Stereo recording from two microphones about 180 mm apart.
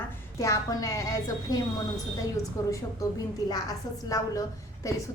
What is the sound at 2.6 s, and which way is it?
Speech, 15° left (ahead or behind).